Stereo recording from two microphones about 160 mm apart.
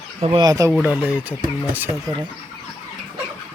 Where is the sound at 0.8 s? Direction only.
10° right (ahead or behind).